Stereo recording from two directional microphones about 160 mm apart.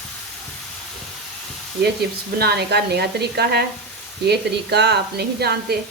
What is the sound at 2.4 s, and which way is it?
A woman's voice, 85° right.